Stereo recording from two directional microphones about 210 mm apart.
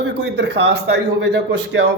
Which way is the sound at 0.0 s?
55° right (ahead or behind).